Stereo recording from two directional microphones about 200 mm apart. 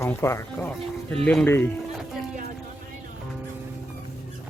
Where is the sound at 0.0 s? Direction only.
15° left (ahead or behind).